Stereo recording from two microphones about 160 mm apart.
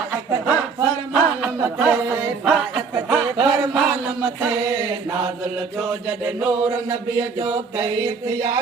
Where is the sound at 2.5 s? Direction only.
5° right (ahead or behind).